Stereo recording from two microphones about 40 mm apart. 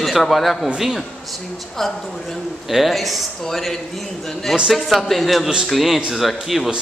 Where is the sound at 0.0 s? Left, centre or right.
Centre.